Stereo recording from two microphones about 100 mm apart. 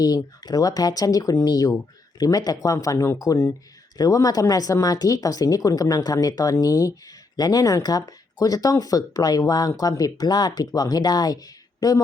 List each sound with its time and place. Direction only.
0.4 s speech: 40° left (ahead or behind)